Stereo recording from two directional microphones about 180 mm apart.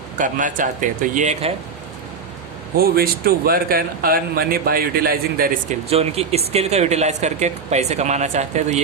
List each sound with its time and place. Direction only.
0.2 s speech: 45° right (ahead or behind)
2.7 s speech: 55° right (ahead or behind)
5.9 s speech: 35° right (ahead or behind)